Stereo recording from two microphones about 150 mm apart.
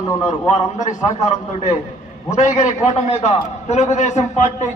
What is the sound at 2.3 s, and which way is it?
A man's voice, 55° left (ahead or behind).